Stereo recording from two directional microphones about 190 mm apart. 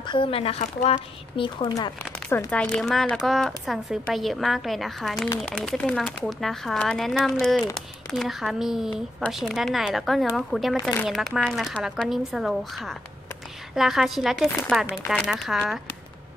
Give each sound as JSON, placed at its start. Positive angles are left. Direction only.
{"t": 0.0, "sound": "speech", "side_deg": 25}
{"t": 2.2, "sound": "speech", "side_deg": 10}
{"t": 11.1, "sound": "speech", "side_deg": 0}